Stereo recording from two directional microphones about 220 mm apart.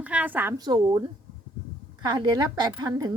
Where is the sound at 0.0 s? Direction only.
5° right (ahead or behind).